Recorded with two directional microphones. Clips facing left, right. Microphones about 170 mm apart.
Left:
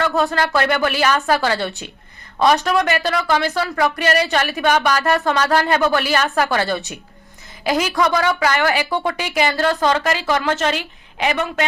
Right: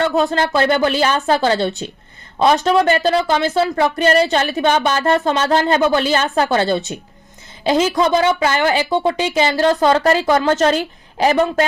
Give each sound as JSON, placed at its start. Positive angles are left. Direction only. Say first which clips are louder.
{"t": 0.0, "sound": "speech", "louder": "right 2 dB", "side_deg": -20}
{"t": 9.9, "sound": "a woman's voice", "louder": "right 5 dB", "side_deg": -35}